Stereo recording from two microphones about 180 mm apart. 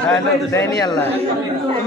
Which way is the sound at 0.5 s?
15° left (ahead or behind).